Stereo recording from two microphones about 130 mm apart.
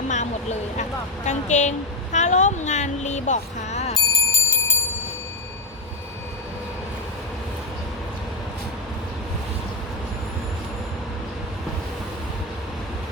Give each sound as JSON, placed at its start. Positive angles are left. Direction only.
{"t": 0.8, "sound": "speech", "side_deg": 65}
{"t": 3.9, "sound": "alarm clock", "side_deg": 25}